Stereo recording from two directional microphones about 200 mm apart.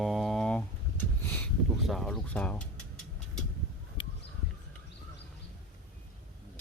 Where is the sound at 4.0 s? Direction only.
25° left (ahead or behind).